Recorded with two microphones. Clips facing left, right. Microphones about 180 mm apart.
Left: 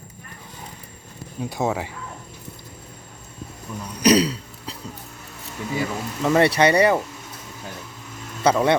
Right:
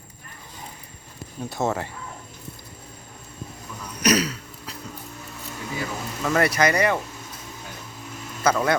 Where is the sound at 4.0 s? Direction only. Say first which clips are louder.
Left 5 dB; 30° left (ahead or behind).